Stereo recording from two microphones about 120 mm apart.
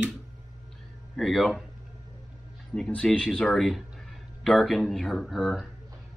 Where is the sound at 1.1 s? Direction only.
Centre (ahead or behind).